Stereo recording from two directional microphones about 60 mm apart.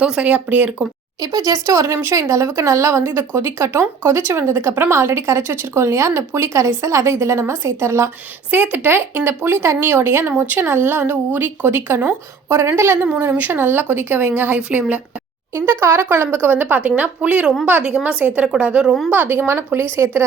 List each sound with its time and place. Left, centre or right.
0.0 s speech: centre
1.2 s speech: right
3.0 s speech: right
8.4 s speech: right
15.5 s a woman's voice: right; by 18.9 s centre
19.1 s speech: right